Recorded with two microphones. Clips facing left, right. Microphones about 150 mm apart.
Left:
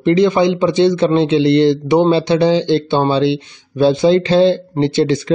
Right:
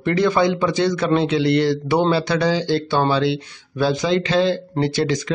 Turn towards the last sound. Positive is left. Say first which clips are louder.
# left 6 dB
turn(degrees=30)  # may be behind; listen again after turning